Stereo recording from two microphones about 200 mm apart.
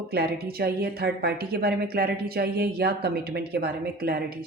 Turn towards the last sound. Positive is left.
turn(degrees=-50)  # may be behind; listen again after turning